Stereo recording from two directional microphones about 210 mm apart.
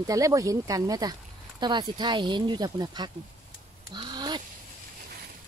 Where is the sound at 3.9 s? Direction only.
20° right (ahead or behind).